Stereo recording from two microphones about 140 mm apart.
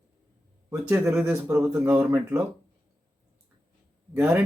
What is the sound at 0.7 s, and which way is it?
Speech, 20° right (ahead or behind).